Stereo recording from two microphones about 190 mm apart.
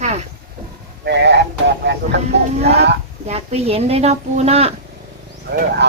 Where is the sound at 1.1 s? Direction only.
65° right (ahead or behind).